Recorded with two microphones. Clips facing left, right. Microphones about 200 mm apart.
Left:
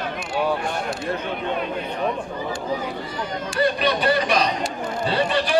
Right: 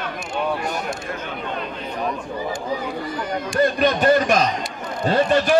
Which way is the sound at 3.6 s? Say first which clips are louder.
Right 3 dB; 45° right (ahead or behind).